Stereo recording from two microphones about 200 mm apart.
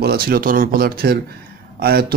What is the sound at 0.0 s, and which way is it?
A man's voice, 50° right (ahead or behind).